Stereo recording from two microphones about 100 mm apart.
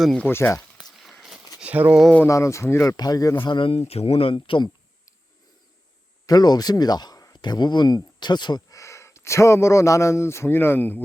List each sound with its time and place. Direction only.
0.2 s speech: 25° left (ahead or behind)
1.5 s a sound: 15° right (ahead or behind)
2.2 s speech: 30° left (ahead or behind)
2.9 s speech: 40° left (ahead or behind)
3.3 s speech: 55° left (ahead or behind)
4.4 s speech: 50° left (ahead or behind)
6.2 s speech: 40° left (ahead or behind)
8.7 s a man's voice: 30° left (ahead or behind)